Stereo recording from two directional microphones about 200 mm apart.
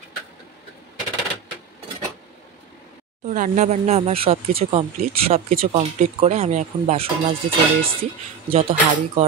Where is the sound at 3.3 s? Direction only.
40° right (ahead or behind).